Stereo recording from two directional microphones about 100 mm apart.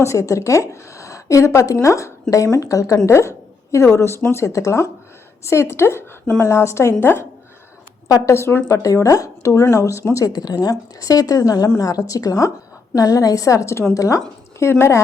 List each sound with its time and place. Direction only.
0.0 s a woman's voice: 30° left (ahead or behind)
8.8 s a woman's voice: 35° left (ahead or behind)